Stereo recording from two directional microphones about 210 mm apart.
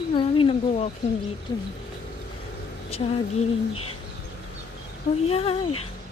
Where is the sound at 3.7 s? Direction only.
90° left.